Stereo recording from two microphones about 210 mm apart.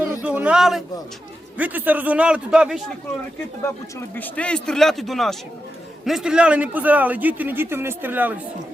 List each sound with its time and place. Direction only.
0.2 s a sound: 5° right (ahead or behind)
1.5 s a man's voice: 10° right (ahead or behind)
4.1 s a man's voice: 5° left (ahead or behind); by 8.4 s 10° right (ahead or behind)